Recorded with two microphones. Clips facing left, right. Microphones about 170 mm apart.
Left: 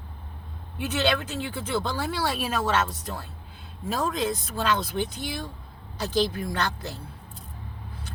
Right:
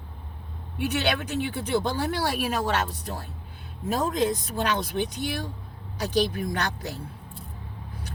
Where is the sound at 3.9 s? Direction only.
15° right (ahead or behind).